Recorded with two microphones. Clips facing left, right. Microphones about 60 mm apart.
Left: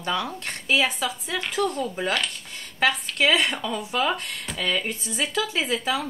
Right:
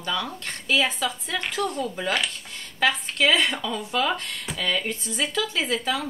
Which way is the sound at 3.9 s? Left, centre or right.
Centre.